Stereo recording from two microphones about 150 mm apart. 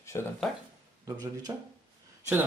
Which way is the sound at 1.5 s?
25° right (ahead or behind).